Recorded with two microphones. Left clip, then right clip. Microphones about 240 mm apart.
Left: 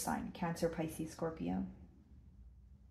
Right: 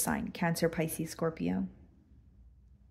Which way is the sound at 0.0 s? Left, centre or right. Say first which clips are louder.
Right 6 dB; right.